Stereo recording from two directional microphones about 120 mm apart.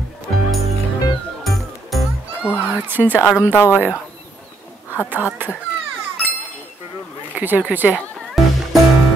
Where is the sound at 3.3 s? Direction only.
20° left (ahead or behind).